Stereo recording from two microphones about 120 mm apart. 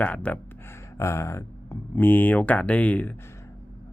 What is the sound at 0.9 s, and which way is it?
Speech, 25° left (ahead or behind).